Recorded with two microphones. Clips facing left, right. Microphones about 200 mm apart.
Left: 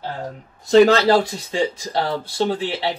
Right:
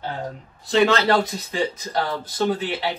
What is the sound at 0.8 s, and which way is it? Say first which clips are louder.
Speech: left 4 dB; 30° left (ahead or behind).